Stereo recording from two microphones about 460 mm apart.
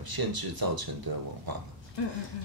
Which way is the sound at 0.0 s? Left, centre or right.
Right.